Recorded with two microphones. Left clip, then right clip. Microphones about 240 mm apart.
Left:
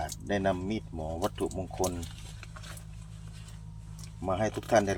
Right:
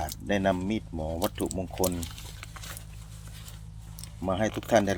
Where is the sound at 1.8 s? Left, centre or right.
Right.